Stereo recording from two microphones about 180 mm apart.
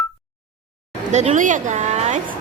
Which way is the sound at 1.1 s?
40° right (ahead or behind).